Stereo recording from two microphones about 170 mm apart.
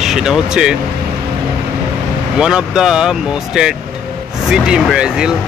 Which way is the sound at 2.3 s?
5° right (ahead or behind).